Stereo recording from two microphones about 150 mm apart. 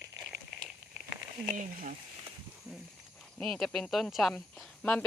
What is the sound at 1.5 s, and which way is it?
Speech, 65° right (ahead or behind).